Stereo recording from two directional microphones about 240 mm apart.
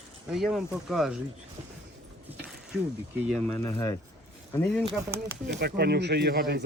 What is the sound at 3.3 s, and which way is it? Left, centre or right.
Speech, centre.